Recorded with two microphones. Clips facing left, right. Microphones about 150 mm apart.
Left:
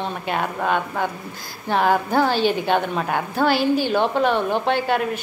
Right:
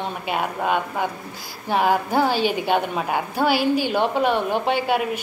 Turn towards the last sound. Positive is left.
turn(degrees=-10)  # may be behind; listen again after turning